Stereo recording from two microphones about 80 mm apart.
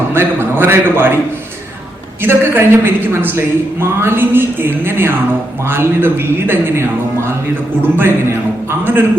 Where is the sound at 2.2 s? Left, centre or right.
Right.